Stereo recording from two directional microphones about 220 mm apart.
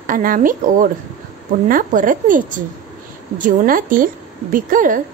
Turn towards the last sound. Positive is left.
turn(degrees=-40)  # may be behind; listen again after turning